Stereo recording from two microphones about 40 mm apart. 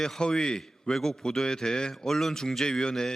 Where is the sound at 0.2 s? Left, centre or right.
Centre.